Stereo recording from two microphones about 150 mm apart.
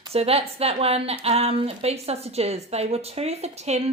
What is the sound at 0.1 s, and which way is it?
A woman's voice, 40° right (ahead or behind).